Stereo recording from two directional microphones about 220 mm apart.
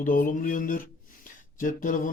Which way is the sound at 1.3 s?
40° left (ahead or behind).